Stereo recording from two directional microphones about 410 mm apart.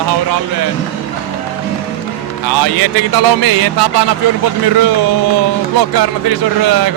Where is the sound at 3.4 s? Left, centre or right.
Right.